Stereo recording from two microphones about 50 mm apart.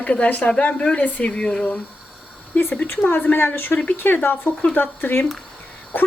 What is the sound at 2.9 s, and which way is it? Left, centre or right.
A woman's voice, left.